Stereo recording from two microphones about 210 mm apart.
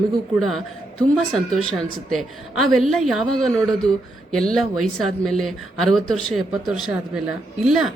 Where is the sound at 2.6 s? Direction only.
Centre (ahead or behind).